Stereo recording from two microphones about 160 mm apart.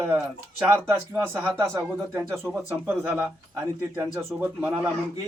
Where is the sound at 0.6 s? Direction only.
10° right (ahead or behind).